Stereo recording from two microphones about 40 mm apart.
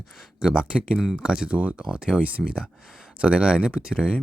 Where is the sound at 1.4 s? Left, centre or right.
Right.